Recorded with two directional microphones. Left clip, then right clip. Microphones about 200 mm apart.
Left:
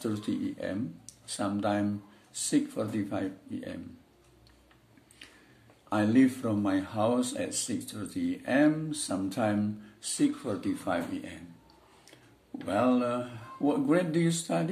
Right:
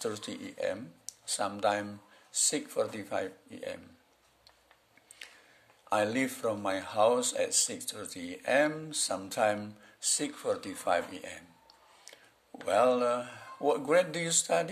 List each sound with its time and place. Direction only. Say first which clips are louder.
0.0 s speech: left 3 dB; 40° right (ahead or behind)
5.2 s a sound: right 3 dB; 35° right (ahead or behind)
5.9 s speech: left 3 dB; 35° right (ahead or behind)